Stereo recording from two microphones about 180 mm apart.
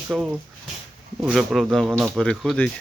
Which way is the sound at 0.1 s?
Centre (ahead or behind).